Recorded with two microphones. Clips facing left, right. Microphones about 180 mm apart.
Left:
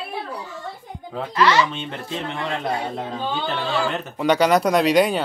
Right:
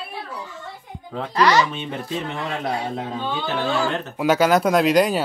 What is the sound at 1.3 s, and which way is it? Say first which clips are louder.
Speech: right 1 dB; 40° right (ahead or behind).